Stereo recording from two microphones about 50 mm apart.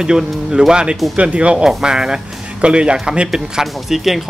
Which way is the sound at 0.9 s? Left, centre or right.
Centre.